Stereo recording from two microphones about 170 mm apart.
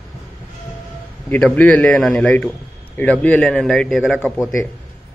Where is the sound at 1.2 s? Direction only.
10° left (ahead or behind).